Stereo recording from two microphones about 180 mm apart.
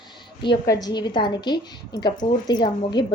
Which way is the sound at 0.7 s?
20° left (ahead or behind).